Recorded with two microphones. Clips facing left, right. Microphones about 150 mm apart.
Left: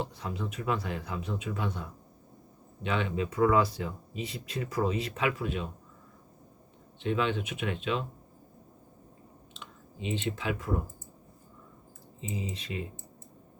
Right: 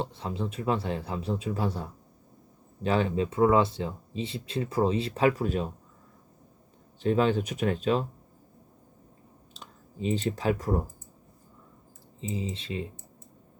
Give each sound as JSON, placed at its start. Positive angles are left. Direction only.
{"t": 0.0, "sound": "speech", "side_deg": -30}
{"t": 7.0, "sound": "speech", "side_deg": -40}
{"t": 9.6, "sound": "speech", "side_deg": -40}
{"t": 12.3, "sound": "speech", "side_deg": -30}